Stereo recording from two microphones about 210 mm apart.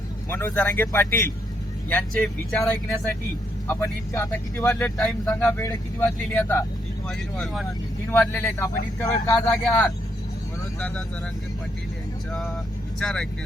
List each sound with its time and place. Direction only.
0.3 s a man's voice: 10° left (ahead or behind)
3.7 s a man's voice: 15° left (ahead or behind)
4.9 s a man's voice: centre (ahead or behind)
13.0 s speech: 5° left (ahead or behind)